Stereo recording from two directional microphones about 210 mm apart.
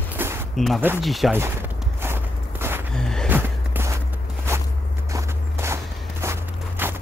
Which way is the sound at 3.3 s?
10° right (ahead or behind).